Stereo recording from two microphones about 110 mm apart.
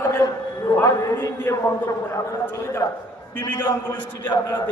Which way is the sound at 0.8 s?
35° left (ahead or behind).